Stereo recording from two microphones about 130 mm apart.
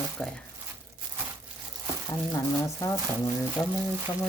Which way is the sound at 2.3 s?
25° left (ahead or behind).